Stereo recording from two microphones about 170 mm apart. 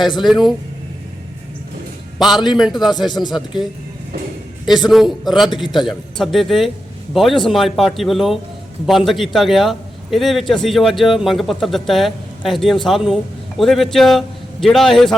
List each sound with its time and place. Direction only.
0.2 s a man's voice: centre (ahead or behind)
2.1 s a man's voice: centre (ahead or behind)
3.1 s speech: 25° left (ahead or behind)
3.3 s a man's voice: centre (ahead or behind)
4.9 s a man's voice: centre (ahead or behind)